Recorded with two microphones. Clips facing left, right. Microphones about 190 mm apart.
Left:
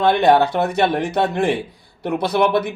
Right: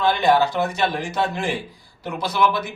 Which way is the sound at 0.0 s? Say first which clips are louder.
Left 4 dB; 60° left (ahead or behind).